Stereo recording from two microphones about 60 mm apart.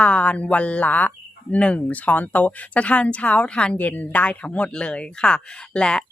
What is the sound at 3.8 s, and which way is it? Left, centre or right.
Speech, left.